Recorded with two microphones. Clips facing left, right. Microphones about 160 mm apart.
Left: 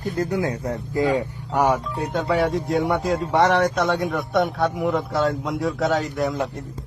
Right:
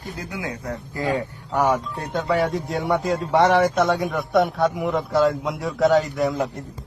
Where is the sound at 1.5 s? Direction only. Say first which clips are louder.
Left 1 dB; 10° left (ahead or behind).